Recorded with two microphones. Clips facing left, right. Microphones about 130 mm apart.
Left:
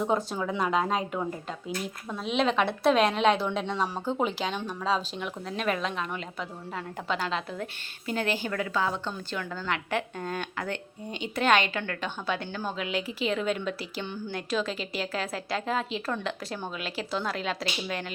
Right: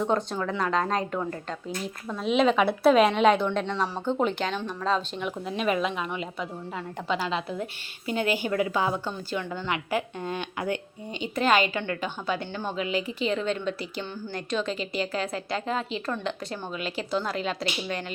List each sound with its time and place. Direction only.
0.0 s a woman's voice: 5° left (ahead or behind)